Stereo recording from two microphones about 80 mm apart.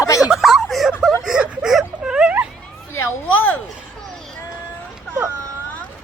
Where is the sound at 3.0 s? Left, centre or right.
Left.